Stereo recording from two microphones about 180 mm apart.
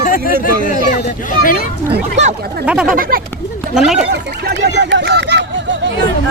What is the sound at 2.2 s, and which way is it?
Speech, 40° right (ahead or behind).